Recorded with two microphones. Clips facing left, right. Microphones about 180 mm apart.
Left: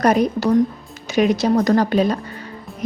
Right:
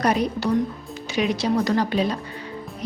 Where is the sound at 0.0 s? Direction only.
45° left (ahead or behind).